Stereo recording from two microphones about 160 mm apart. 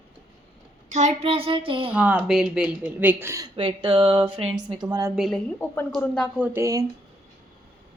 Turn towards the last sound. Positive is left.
turn(degrees=-20)  # may be behind; listen again after turning